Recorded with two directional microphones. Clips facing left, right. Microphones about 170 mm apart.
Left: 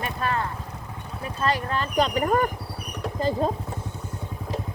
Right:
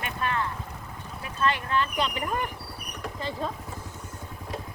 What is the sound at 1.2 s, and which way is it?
Speech, 35° left (ahead or behind).